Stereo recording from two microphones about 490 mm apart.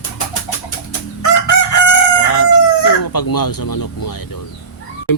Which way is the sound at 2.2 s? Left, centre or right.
Left.